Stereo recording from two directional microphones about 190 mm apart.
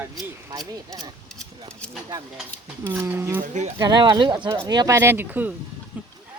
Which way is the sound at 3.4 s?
40° right (ahead or behind).